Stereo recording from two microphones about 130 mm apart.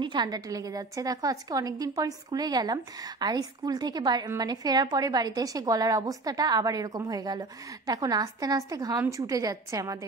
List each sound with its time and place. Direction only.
0.0 s a woman's voice: 35° right (ahead or behind)